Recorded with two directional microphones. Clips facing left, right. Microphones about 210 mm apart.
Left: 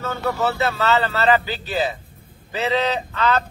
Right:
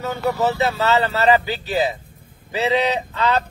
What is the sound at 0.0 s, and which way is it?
Speech, 15° right (ahead or behind).